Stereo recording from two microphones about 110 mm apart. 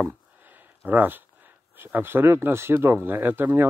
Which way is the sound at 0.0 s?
15° right (ahead or behind).